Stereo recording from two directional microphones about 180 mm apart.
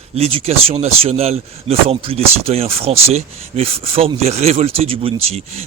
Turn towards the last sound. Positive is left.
turn(degrees=-35)  # may be behind; listen again after turning